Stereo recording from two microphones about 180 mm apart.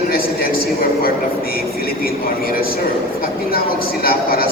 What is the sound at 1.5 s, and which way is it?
A woman's voice, 55° left (ahead or behind).